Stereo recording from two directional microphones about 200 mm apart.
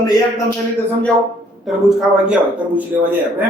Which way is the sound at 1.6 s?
Centre (ahead or behind).